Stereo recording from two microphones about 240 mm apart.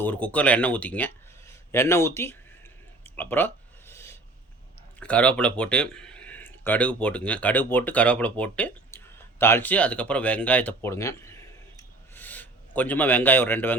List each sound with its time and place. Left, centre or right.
0.0 s speech: centre
3.0 s a sound: centre
4.9 s speech: centre